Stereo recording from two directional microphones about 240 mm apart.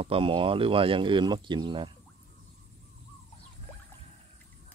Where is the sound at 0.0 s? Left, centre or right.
Right.